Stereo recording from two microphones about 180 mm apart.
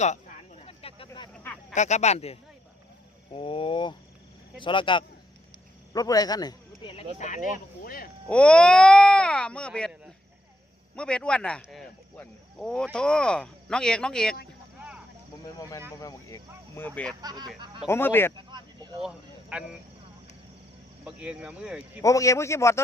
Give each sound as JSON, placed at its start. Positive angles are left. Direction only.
{"t": 0.6, "sound": "snake", "side_deg": 30}
{"t": 1.7, "sound": "speech", "side_deg": 40}
{"t": 8.3, "sound": "speech", "side_deg": 5}
{"t": 10.9, "sound": "speech", "side_deg": 5}
{"t": 16.0, "sound": "speech", "side_deg": 20}
{"t": 16.7, "sound": "speech", "side_deg": 10}
{"t": 17.2, "sound": "speech", "side_deg": -20}
{"t": 17.8, "sound": "speech", "side_deg": 15}
{"t": 18.3, "sound": "speech", "side_deg": -25}
{"t": 19.0, "sound": "speech", "side_deg": -5}
{"t": 21.0, "sound": "speech", "side_deg": -5}
{"t": 22.0, "sound": "speech", "side_deg": 20}